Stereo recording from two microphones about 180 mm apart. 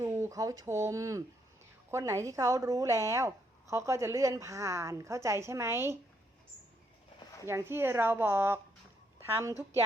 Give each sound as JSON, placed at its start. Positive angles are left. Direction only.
{"t": 0.0, "sound": "speech", "side_deg": -15}
{"t": 7.4, "sound": "speech", "side_deg": -15}